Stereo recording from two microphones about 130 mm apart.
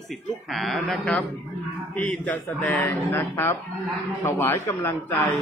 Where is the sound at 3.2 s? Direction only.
20° left (ahead or behind).